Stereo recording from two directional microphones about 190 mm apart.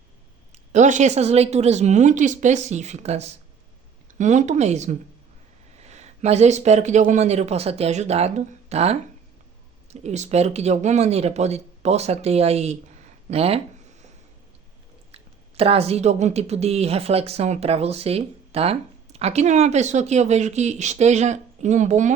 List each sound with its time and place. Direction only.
0.5 s speech: 40° right (ahead or behind)
15.1 s speech: 30° right (ahead or behind)